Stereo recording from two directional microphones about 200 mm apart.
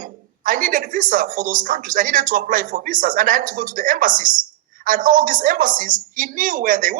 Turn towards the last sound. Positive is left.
turn(degrees=-45)  # may be behind; listen again after turning